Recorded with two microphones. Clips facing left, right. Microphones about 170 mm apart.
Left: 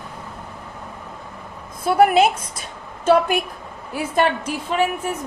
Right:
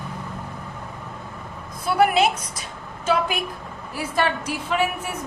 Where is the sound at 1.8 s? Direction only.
50° left (ahead or behind).